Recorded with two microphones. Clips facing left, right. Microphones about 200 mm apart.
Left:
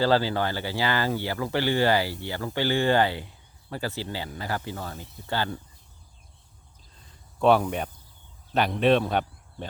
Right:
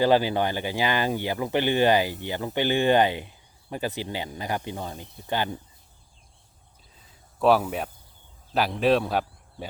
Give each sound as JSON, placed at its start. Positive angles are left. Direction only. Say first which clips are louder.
{"t": 0.0, "sound": "speech", "louder": "right 2 dB", "side_deg": -15}
{"t": 6.9, "sound": "a sound", "louder": "left 1 dB", "side_deg": -5}
{"t": 8.5, "sound": "speech", "louder": "even", "side_deg": 0}